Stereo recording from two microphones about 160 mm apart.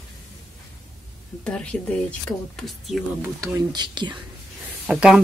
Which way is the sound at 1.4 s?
5° left (ahead or behind).